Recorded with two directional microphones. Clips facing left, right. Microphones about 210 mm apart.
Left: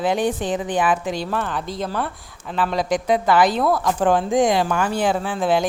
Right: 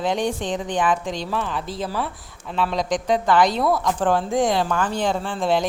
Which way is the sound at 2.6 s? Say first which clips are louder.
Left 2 dB; 5° left (ahead or behind).